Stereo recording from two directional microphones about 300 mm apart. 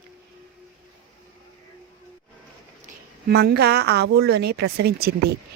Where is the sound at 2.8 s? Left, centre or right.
Right.